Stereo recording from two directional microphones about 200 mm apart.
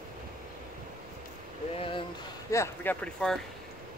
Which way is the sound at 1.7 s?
25° left (ahead or behind).